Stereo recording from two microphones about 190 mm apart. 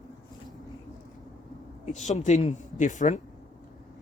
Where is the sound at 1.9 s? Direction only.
40° left (ahead or behind).